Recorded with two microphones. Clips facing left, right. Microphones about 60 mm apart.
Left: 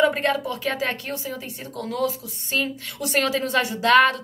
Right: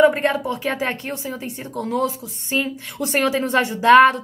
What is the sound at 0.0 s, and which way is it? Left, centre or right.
A woman's voice, centre.